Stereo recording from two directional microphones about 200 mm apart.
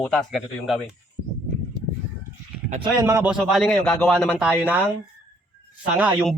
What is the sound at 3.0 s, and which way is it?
Speech, 15° right (ahead or behind).